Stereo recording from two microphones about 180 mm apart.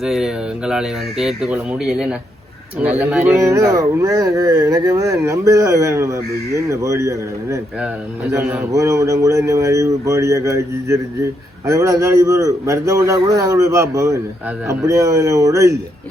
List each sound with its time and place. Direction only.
0.0 s speech: centre (ahead or behind); by 15.8 s 15° right (ahead or behind)